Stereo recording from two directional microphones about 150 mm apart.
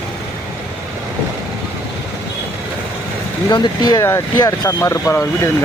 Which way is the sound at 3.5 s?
30° left (ahead or behind).